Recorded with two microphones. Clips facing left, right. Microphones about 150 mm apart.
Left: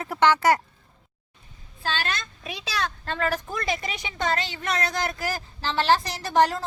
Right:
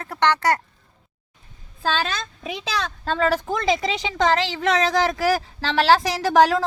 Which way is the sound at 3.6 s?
90° right.